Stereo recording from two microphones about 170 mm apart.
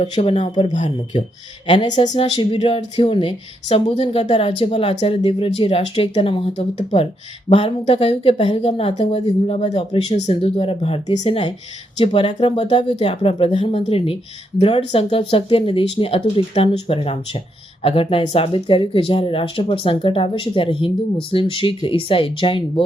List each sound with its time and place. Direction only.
0.0 s speech: 35° left (ahead or behind)